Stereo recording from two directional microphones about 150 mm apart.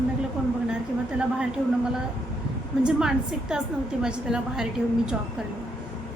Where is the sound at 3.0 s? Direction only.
5° right (ahead or behind).